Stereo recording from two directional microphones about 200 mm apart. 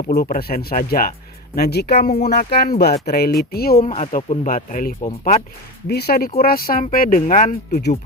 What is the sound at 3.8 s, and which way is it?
Speech, 35° left (ahead or behind).